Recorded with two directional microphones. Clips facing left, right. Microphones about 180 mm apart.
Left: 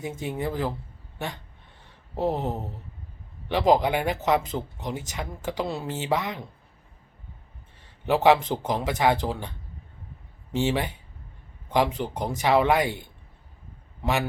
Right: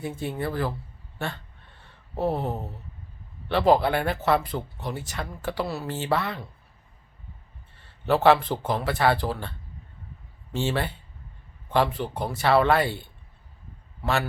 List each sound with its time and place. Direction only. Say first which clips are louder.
0.0 s speech: even; 15° left (ahead or behind)
1.2 s a sound: right 1 dB; 15° left (ahead or behind)
3.5 s speech: right 1 dB; 15° left (ahead or behind)
7.8 s a man's voice: right 1 dB; 15° left (ahead or behind)